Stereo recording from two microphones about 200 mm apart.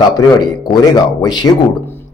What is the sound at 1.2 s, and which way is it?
Speech, 20° left (ahead or behind).